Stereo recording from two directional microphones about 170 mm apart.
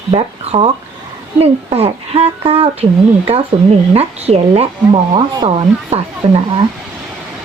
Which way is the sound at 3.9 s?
35° right (ahead or behind).